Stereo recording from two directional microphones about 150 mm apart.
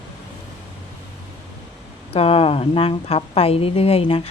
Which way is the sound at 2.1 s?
40° left (ahead or behind).